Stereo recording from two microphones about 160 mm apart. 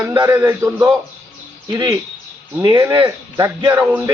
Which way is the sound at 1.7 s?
25° right (ahead or behind).